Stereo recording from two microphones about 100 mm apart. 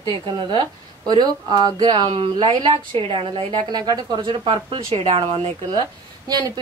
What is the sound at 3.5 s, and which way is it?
A woman's voice, 45° right (ahead or behind).